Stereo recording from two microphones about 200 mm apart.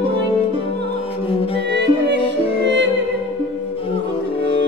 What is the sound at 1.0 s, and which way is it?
Music, 30° left (ahead or behind).